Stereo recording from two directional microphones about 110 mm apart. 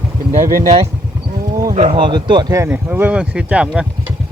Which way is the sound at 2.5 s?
25° right (ahead or behind).